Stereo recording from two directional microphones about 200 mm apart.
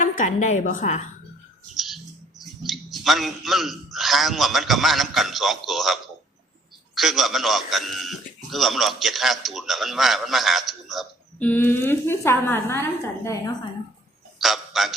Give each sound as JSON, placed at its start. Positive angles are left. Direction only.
{"t": 0.0, "sound": "a woman's voice", "side_deg": 40}
{"t": 1.7, "sound": "bird", "side_deg": 0}
{"t": 2.4, "sound": "a man's voice", "side_deg": 0}
{"t": 14.3, "sound": "speech", "side_deg": 0}